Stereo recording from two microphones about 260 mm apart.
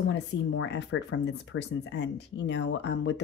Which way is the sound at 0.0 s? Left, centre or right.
Left.